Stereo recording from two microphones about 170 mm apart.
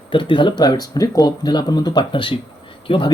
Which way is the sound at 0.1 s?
30° left (ahead or behind).